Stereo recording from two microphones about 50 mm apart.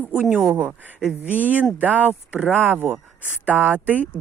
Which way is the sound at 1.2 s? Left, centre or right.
Right.